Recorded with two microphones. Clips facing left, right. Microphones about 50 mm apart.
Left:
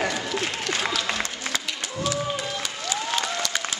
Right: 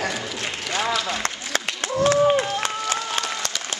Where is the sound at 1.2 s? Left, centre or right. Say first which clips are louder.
Right 4 dB; right.